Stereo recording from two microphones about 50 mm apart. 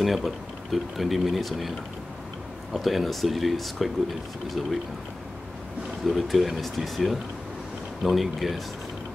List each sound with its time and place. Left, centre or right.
0.0 s speech: centre
2.7 s speech: centre
6.0 s speech: centre